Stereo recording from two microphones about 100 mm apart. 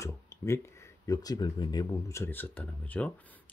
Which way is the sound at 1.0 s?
40° left (ahead or behind).